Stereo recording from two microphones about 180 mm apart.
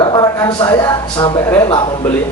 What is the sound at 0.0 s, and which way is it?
Speech, 20° left (ahead or behind).